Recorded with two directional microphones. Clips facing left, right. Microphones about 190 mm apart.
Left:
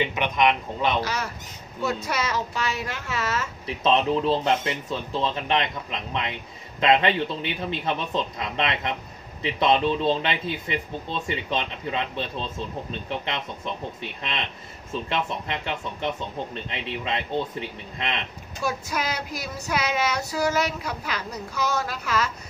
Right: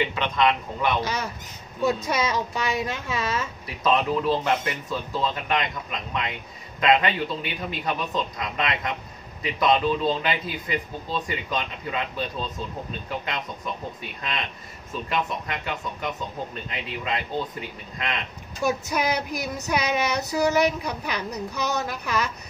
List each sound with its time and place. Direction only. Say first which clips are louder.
0.0 s speech: even; 15° left (ahead or behind)
1.0 s speech: right 1 dB; 20° right (ahead or behind)
1.8 s child singing: right 3 dB; 15° right (ahead or behind)
3.6 s speech: left 2 dB; 25° left (ahead or behind)
14.9 s speech: even; 30° left (ahead or behind)
18.6 s child singing: right 3 dB; 15° right (ahead or behind)